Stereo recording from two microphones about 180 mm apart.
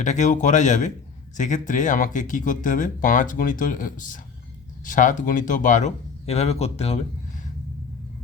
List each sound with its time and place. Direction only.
0.0 s speech: 40° left (ahead or behind)